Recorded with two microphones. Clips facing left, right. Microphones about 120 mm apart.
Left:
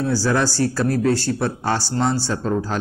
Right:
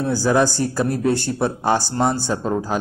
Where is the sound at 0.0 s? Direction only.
15° right (ahead or behind).